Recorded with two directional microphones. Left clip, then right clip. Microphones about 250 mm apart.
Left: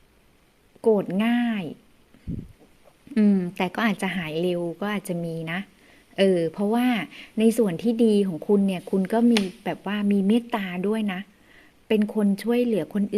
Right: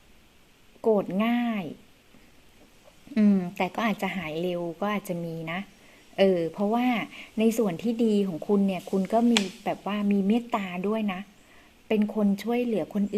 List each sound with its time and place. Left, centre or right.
0.8 s speech: left
3.2 s speech: centre
12.4 s speech: left